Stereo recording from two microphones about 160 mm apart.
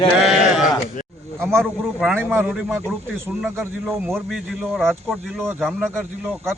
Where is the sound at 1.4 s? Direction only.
15° right (ahead or behind).